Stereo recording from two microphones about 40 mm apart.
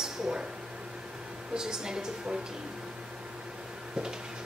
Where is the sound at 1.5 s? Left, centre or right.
Centre.